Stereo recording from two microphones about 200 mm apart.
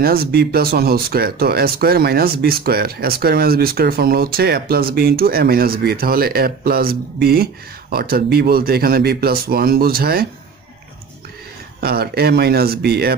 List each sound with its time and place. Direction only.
0.0 s speech: 50° right (ahead or behind)
11.8 s speech: 50° right (ahead or behind)